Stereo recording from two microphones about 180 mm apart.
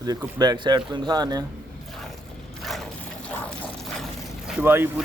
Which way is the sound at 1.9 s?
Centre (ahead or behind).